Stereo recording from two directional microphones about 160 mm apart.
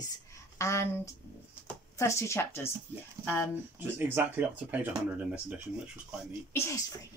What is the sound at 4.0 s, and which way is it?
Speech, 15° right (ahead or behind).